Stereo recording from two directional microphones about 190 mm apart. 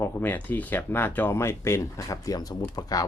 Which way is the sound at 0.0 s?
10° left (ahead or behind).